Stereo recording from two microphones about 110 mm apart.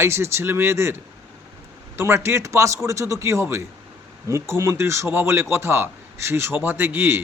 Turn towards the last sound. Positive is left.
turn(degrees=-20)  # may be behind; listen again after turning